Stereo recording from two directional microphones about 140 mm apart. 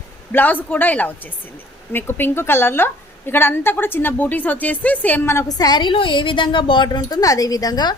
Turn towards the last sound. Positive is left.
turn(degrees=30)  # may be behind; listen again after turning